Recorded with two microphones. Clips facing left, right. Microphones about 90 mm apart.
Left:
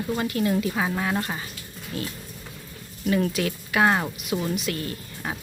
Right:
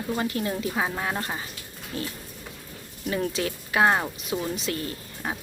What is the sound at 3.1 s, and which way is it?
A woman's voice, 25° right (ahead or behind).